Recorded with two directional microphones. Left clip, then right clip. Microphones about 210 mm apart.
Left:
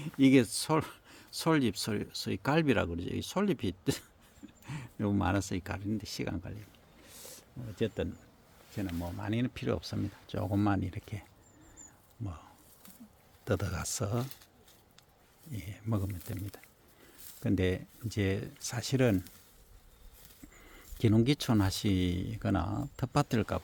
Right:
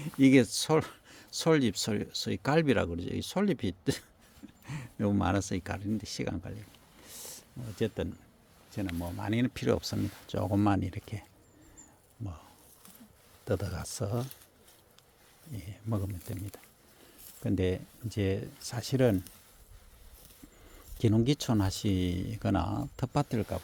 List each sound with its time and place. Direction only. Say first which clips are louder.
0.0 s speech: right 2 dB; 15° right (ahead or behind)
7.0 s a sound: right 4 dB; 15° right (ahead or behind)
8.7 s speech: right 2 dB; 15° right (ahead or behind)
15.5 s speech: even; centre (ahead or behind)
21.0 s speech: even; centre (ahead or behind)